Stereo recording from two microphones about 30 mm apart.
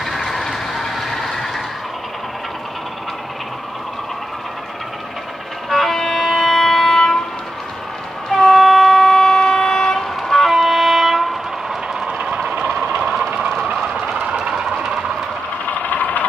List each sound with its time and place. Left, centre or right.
0.0 s train: centre
5.7 s vehicle: centre
8.4 s train: centre
8.6 s vehicle: centre
12.1 s vehicle: right
12.9 s vehicle: centre
14.3 s vehicle: centre
15.7 s vehicle: left